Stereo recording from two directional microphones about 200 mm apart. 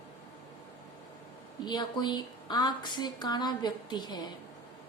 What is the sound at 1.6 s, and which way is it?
A woman's voice, 20° left (ahead or behind).